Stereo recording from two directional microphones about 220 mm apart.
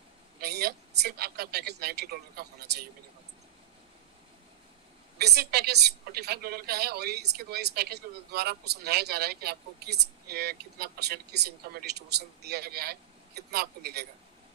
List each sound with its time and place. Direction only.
0.4 s speech: 45° right (ahead or behind)
5.2 s a woman's voice: 45° right (ahead or behind)